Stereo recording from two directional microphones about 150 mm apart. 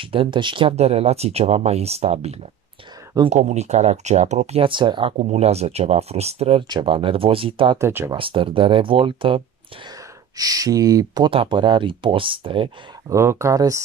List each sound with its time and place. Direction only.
0.0 s speech: 35° right (ahead or behind)
5.1 s speech: 50° right (ahead or behind)
7.8 s speech: 15° right (ahead or behind)
8.2 s speech: 35° right (ahead or behind)
10.3 s speech: 25° right (ahead or behind)
13.1 s speech: 20° right (ahead or behind)